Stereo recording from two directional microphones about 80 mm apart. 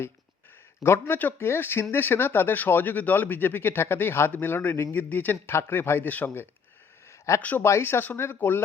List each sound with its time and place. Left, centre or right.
0.8 s speech: left
7.1 s a sound: left
7.6 s speech: left